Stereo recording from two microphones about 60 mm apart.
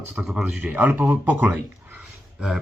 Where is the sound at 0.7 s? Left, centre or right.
Right.